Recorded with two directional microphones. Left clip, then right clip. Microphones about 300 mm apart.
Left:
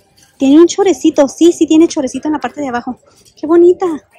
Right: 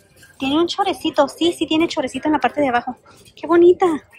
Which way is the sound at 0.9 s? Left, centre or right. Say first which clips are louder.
Left 7 dB; left.